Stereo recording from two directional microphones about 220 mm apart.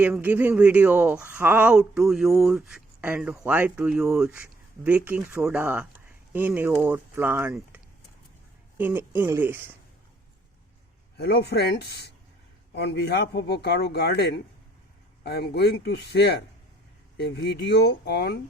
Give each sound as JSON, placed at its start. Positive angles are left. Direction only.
{"t": 0.0, "sound": "speech", "side_deg": -10}
{"t": 8.8, "sound": "speech", "side_deg": -10}
{"t": 11.2, "sound": "speech", "side_deg": 45}